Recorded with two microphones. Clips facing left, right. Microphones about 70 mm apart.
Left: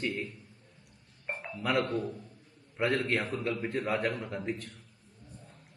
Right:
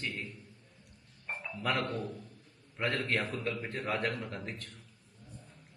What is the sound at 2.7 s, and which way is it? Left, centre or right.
Speech, centre.